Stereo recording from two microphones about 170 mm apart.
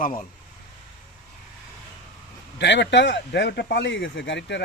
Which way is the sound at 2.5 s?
90° left.